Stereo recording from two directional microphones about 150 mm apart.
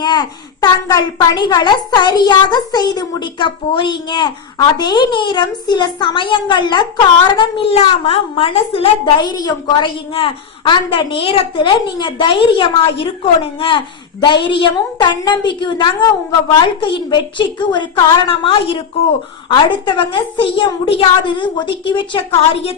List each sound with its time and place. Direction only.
0.0 s a child's voice: 30° left (ahead or behind)